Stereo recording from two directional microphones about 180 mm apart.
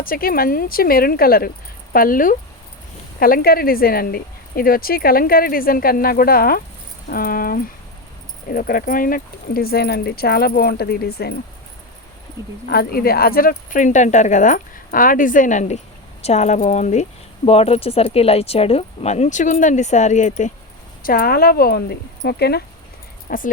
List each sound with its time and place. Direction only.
0.0 s speech: 55° left (ahead or behind)
12.6 s speech: 60° left (ahead or behind); by 20.5 s 40° left (ahead or behind)
21.0 s speech: 55° left (ahead or behind)